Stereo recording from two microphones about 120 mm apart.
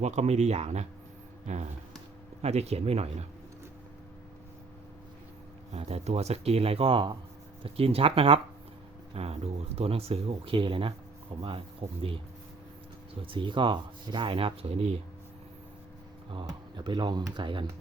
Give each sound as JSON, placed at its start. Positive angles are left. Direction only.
{"t": 0.0, "sound": "speech", "side_deg": -65}
{"t": 1.5, "sound": "speech", "side_deg": -75}
{"t": 2.4, "sound": "speech", "side_deg": -60}
{"t": 5.7, "sound": "speech", "side_deg": -60}
{"t": 7.6, "sound": "speech", "side_deg": -55}
{"t": 13.2, "sound": "speech", "side_deg": -45}
{"t": 16.3, "sound": "speech", "side_deg": -40}